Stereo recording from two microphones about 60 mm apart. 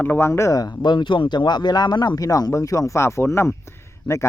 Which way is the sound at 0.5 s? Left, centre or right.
Left.